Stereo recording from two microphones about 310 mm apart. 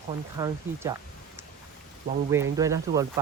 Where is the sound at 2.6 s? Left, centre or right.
Centre.